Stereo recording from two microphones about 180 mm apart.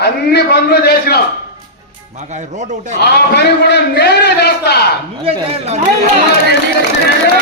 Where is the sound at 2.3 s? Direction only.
40° right (ahead or behind).